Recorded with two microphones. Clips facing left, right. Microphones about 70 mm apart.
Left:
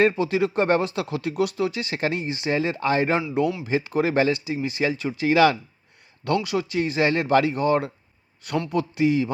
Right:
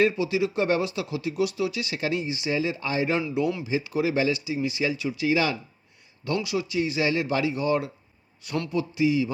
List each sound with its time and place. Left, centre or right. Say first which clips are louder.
0.1 s speech: left 3 dB; left
5.3 s speech: left 9 dB; left